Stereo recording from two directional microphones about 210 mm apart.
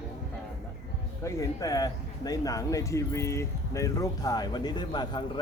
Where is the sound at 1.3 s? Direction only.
15° left (ahead or behind).